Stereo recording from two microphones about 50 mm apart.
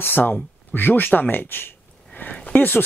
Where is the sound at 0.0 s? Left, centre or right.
Left.